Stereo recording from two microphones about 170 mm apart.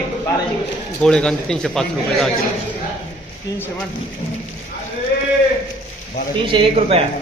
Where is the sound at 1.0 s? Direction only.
5° left (ahead or behind).